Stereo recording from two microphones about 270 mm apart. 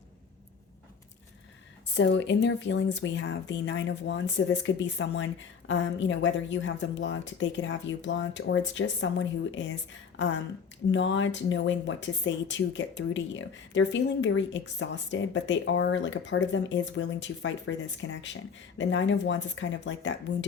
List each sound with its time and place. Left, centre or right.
2.0 s speech: left